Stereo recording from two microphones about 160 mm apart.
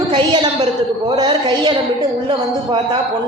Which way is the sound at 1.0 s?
25° right (ahead or behind).